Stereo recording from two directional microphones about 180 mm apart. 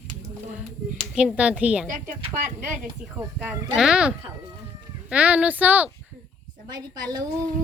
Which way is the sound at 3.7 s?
5° right (ahead or behind).